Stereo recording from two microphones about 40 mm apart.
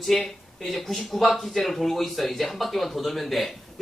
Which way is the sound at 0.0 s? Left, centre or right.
Centre.